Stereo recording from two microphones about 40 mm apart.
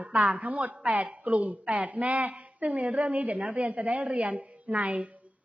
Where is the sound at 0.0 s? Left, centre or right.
Right.